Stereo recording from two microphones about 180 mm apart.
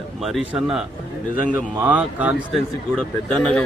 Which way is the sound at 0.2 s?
Centre (ahead or behind).